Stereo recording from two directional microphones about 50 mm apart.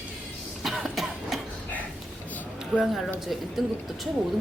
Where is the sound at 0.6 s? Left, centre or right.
Centre.